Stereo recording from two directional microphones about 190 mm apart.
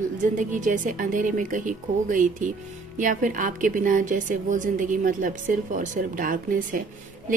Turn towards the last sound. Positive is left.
turn(degrees=-45)  # may be behind; listen again after turning